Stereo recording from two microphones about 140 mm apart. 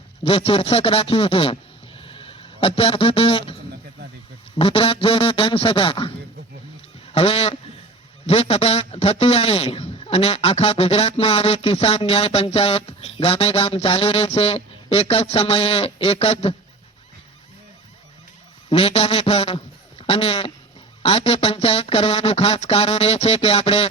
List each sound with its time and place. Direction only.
0.3 s a man's voice: 45° left (ahead or behind)
2.0 s a sound: 40° left (ahead or behind)
4.5 s a man's voice: 40° left (ahead or behind)
18.7 s a man's voice: 45° left (ahead or behind)